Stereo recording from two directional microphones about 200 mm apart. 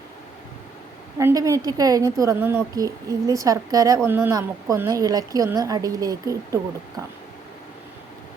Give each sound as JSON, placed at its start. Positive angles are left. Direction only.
{"t": 1.2, "sound": "a woman's voice", "side_deg": -15}